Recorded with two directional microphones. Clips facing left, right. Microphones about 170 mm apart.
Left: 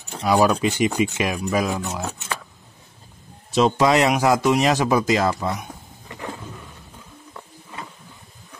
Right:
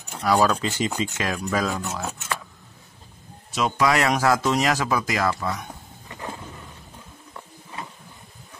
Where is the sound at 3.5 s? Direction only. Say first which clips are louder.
Left 5 dB; 25° left (ahead or behind).